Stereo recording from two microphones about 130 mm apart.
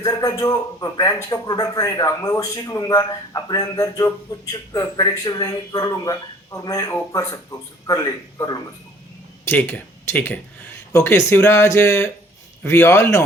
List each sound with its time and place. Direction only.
0.0 s speech: 25° left (ahead or behind)
9.4 s speech: 15° left (ahead or behind)